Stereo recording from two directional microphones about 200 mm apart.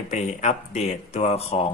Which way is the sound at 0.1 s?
35° left (ahead or behind).